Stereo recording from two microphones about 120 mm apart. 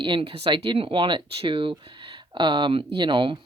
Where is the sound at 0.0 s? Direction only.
45° right (ahead or behind).